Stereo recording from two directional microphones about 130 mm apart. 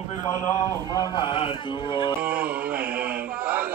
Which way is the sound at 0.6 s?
25° left (ahead or behind).